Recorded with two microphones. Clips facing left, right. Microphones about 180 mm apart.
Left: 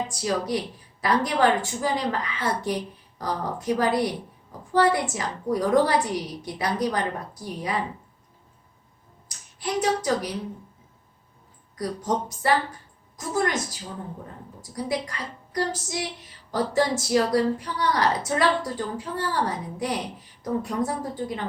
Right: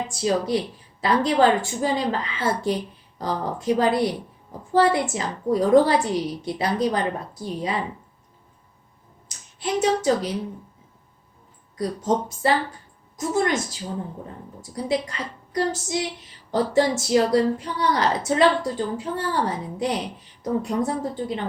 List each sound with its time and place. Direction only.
0.1 s a woman's voice: 25° right (ahead or behind)
9.6 s a woman's voice: 25° right (ahead or behind)
11.8 s a woman's voice: 25° right (ahead or behind)